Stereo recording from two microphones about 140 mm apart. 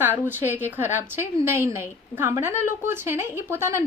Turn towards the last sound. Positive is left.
turn(degrees=-20)  # may be behind; listen again after turning